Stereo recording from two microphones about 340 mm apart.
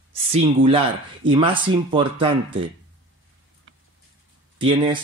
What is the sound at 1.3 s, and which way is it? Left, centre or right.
Speech, centre.